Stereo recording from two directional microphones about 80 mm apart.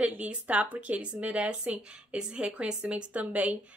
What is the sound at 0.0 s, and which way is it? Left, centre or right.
A woman's voice, centre.